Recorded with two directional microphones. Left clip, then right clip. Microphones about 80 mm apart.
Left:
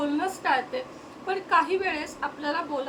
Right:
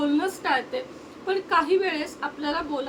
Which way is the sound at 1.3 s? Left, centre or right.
Right.